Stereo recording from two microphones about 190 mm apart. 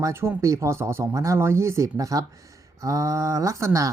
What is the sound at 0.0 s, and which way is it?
Speech, 15° right (ahead or behind).